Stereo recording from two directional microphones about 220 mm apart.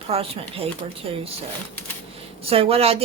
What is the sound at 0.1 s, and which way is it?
Speech, 25° right (ahead or behind).